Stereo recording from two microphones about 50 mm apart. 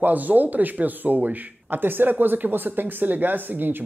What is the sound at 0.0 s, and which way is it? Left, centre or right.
Speech, right.